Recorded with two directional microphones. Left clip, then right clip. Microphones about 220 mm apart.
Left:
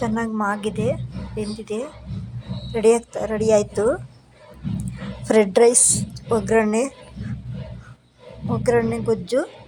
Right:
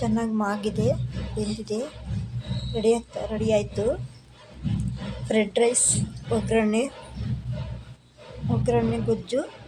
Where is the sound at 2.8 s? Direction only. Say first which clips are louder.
Left 6 dB; 20° left (ahead or behind).